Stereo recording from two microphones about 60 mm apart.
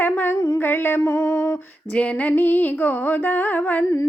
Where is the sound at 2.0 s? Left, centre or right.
Left.